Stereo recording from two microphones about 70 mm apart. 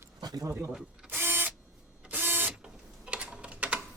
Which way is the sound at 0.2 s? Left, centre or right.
Right.